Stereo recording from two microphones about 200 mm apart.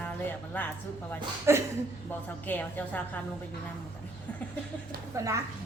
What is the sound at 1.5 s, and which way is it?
Speech, 15° right (ahead or behind).